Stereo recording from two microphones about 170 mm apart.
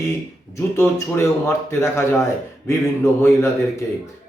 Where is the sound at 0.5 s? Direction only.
15° left (ahead or behind).